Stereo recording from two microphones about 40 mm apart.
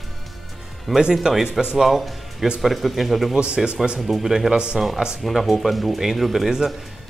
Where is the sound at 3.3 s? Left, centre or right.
Right.